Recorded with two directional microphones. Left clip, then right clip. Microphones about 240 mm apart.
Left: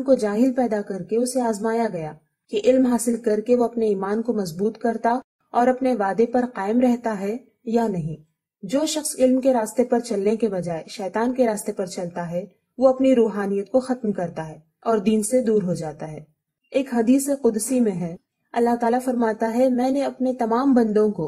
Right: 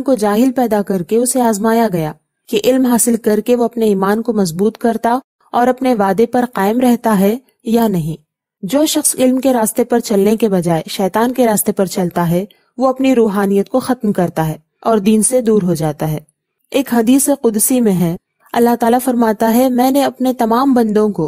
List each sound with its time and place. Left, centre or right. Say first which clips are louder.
0.0 s a woman's voice: right 6 dB; right